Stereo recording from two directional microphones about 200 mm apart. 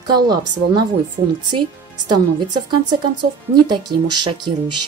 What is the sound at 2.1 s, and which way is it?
Speech, 25° right (ahead or behind).